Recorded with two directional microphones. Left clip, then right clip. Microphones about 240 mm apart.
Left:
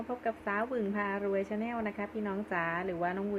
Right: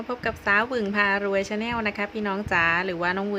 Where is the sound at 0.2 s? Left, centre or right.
Right.